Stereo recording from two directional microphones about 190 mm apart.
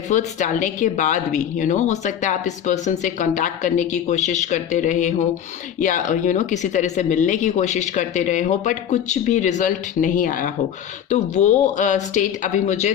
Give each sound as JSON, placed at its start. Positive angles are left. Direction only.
{"t": 0.1, "sound": "a woman's voice", "side_deg": 40}